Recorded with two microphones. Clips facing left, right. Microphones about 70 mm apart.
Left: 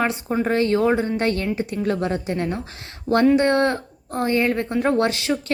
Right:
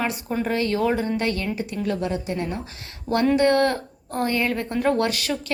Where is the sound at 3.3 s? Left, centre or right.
Left.